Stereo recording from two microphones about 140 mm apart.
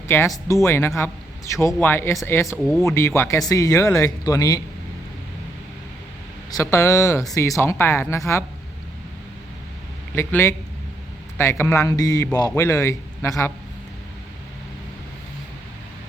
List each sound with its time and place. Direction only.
0.1 s a man's voice: 15° left (ahead or behind)
2.6 s speech: centre (ahead or behind)
2.8 s a man's voice: 20° left (ahead or behind)
6.5 s a man's voice: 20° left (ahead or behind)
10.2 s a man's voice: 15° left (ahead or behind)